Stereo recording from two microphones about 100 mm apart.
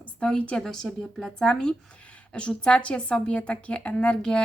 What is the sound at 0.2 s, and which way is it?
A woman's voice, 10° left (ahead or behind).